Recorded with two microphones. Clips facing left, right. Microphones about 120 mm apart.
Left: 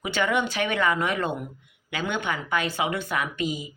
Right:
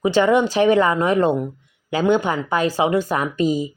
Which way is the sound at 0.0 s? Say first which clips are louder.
Right 9 dB; 30° right (ahead or behind).